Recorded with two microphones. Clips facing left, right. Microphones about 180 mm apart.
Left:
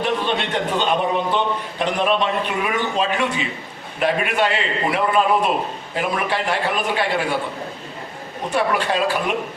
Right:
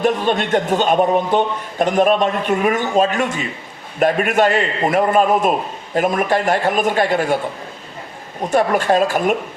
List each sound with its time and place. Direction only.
0.0 s a man's voice: 45° right (ahead or behind)
8.4 s a man's voice: 45° right (ahead or behind)